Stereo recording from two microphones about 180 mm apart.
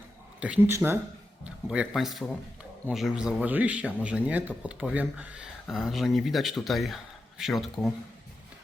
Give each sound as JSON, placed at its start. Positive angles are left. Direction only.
{"t": 0.3, "sound": "speech", "side_deg": -5}